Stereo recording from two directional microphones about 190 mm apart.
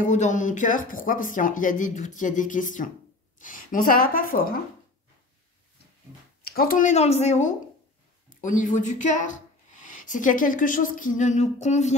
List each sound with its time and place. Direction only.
0.0 s speech: 40° left (ahead or behind)
6.4 s speech: 50° left (ahead or behind)